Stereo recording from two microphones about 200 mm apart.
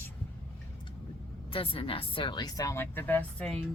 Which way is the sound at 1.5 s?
25° left (ahead or behind).